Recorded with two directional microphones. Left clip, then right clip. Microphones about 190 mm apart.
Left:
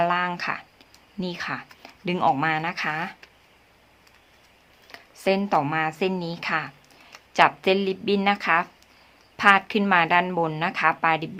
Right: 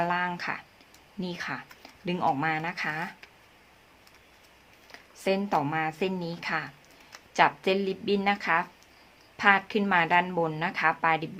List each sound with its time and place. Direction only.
0.0 s a sound: 25° left (ahead or behind)
1.2 s speech: 20° left (ahead or behind)
4.9 s a woman's voice: 25° left (ahead or behind)